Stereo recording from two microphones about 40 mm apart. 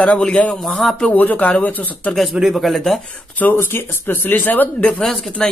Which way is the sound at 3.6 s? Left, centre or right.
Left.